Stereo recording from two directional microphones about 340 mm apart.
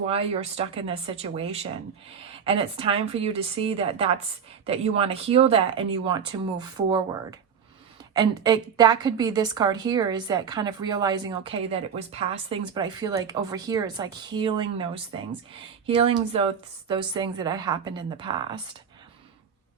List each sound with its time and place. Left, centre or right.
0.0 s a woman's voice: centre